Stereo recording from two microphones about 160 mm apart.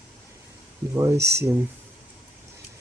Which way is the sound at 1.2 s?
90° right.